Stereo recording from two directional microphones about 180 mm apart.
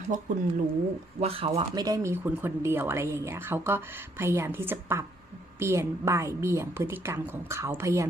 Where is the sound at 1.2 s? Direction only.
35° right (ahead or behind).